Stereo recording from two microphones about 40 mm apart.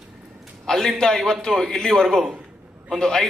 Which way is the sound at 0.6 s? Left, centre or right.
Centre.